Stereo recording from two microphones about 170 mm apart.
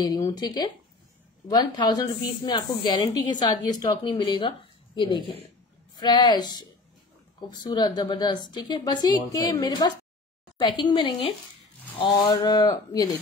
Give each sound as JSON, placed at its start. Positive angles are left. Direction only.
{"t": 0.0, "sound": "a woman's voice", "side_deg": 20}